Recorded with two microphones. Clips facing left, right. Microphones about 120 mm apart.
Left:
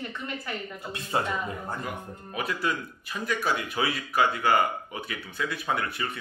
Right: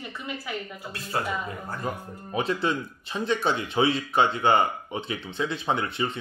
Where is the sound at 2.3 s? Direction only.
25° right (ahead or behind).